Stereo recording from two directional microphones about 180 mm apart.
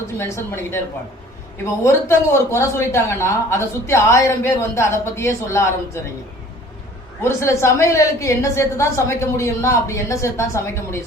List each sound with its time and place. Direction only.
0.2 s speech: 15° left (ahead or behind)
7.2 s speech: 15° left (ahead or behind)